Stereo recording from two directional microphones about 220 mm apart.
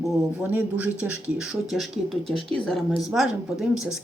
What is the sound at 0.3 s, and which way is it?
A woman's voice, 5° right (ahead or behind).